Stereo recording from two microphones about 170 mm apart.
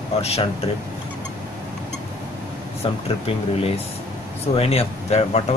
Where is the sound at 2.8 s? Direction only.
35° left (ahead or behind).